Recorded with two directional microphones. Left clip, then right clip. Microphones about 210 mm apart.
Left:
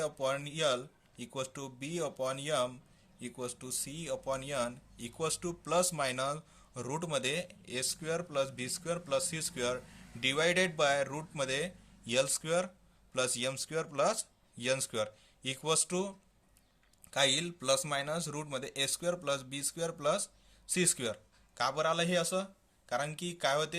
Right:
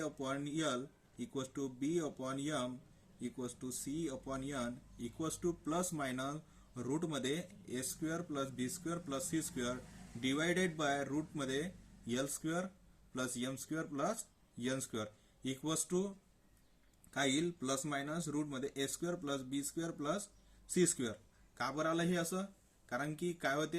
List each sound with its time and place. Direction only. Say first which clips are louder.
0.0 s speech: left 7 dB; 40° left (ahead or behind)
17.2 s speech: left 6 dB; 40° left (ahead or behind)
21.5 s speech: left 6 dB; 40° left (ahead or behind)